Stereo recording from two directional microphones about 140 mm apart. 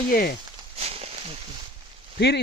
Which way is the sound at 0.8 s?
45° right (ahead or behind).